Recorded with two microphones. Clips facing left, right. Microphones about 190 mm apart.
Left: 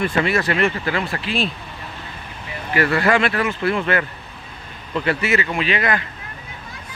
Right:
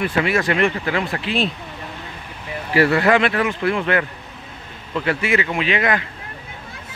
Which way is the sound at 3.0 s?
20° right (ahead or behind).